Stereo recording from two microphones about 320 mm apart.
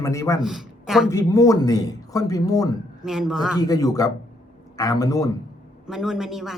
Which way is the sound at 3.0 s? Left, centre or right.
Centre.